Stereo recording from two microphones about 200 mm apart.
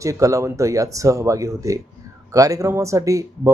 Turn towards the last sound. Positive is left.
turn(degrees=-15)  # may be behind; listen again after turning